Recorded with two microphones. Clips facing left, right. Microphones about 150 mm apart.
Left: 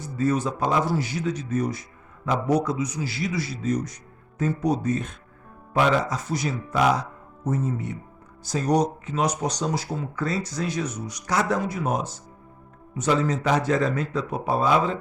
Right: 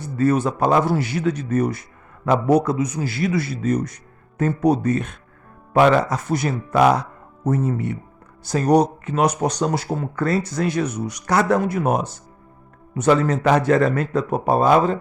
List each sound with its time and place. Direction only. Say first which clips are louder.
0.0 s speech: right 5 dB; 65° right (ahead or behind); by 14.9 s 45° right (ahead or behind)